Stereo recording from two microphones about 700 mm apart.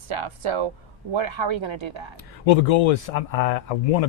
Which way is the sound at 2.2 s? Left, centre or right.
Left.